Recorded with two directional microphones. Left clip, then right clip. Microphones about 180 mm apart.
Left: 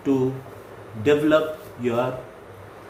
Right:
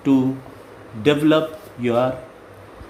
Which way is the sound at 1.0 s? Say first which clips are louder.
Right 2 dB; 60° right (ahead or behind).